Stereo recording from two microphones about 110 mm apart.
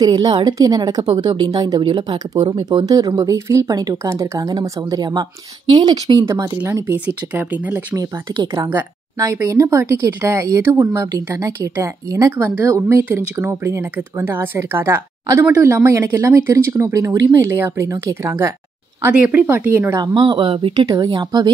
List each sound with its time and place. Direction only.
0.0 s speech: 40° right (ahead or behind)
2.3 s speech: 35° right (ahead or behind)
5.7 s speech: 50° right (ahead or behind)
6.2 s speech: 30° right (ahead or behind)
6.7 s speech: 20° right (ahead or behind)
8.3 s speech: 35° right (ahead or behind)
19.1 s speech: 10° right (ahead or behind)
20.0 s speech: 45° right (ahead or behind)
20.8 s speech: 35° right (ahead or behind)